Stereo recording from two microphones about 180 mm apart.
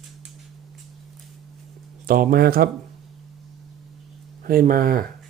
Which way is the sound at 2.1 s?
50° right (ahead or behind).